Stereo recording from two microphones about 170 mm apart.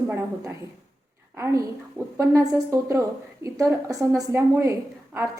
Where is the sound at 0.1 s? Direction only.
15° right (ahead or behind).